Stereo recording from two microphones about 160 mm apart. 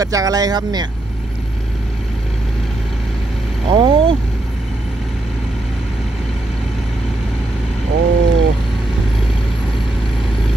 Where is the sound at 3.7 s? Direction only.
30° right (ahead or behind).